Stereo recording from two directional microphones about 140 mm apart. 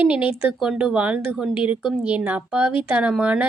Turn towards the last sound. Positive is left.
turn(degrees=-10)  # may be behind; listen again after turning